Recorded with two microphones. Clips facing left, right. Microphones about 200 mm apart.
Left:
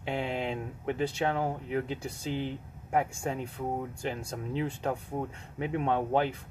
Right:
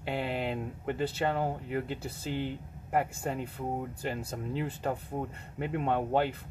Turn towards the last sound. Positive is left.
turn(degrees=-5)  # may be behind; listen again after turning